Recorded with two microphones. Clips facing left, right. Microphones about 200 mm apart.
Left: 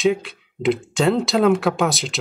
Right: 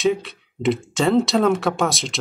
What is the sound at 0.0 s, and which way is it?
Speech, centre (ahead or behind).